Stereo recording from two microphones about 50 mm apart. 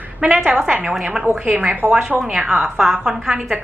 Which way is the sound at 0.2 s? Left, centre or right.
Centre.